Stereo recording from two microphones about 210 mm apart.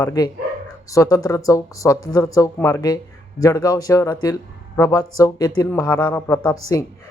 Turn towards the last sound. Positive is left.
turn(degrees=10)  # may be behind; listen again after turning